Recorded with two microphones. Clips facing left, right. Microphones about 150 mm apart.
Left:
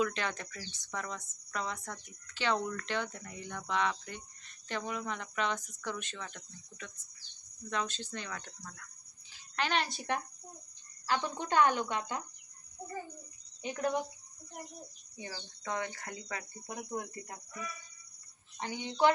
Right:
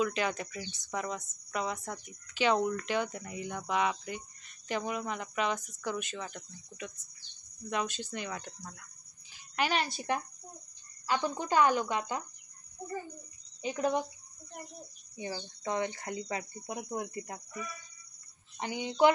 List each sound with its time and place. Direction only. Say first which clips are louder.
0.0 s speech: right 3 dB; 10° right (ahead or behind)
9.6 s speech: right 2 dB; 5° right (ahead or behind)
13.6 s speech: right 3 dB; 5° right (ahead or behind)
15.1 s speech: right 6 dB; 20° right (ahead or behind)
18.6 s speech: right 3 dB; 15° right (ahead or behind)